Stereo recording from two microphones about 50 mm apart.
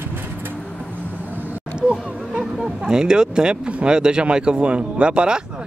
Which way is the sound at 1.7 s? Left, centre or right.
Right.